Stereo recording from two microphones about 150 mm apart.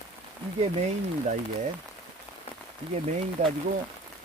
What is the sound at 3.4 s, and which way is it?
Speech, 50° right (ahead or behind).